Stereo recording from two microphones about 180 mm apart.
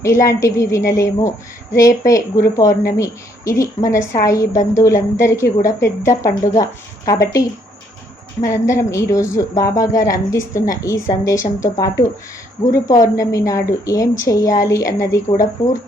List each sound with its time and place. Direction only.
0.0 s speech: 15° left (ahead or behind)